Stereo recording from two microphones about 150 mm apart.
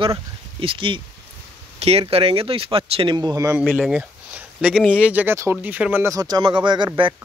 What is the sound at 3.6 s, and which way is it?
Speech, centre (ahead or behind).